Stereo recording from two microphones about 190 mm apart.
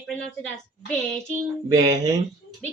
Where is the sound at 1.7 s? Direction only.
20° right (ahead or behind).